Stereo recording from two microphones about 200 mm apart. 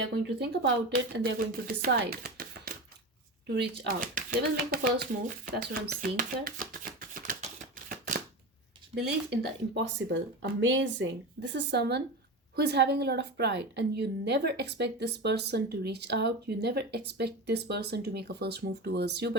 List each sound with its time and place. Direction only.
0.0 s a woman's voice: 55° right (ahead or behind)
7.9 s a sound: 40° right (ahead or behind)
9.0 s a woman's voice: 60° right (ahead or behind)